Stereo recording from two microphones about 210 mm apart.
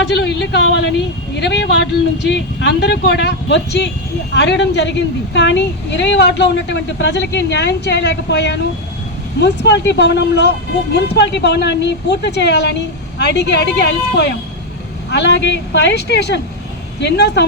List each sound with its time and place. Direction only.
0.1 s a woman's voice: 55° left (ahead or behind)